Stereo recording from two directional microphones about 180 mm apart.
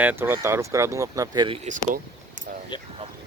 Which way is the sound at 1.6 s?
45° right (ahead or behind).